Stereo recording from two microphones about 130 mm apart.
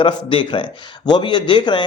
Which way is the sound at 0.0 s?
40° left (ahead or behind).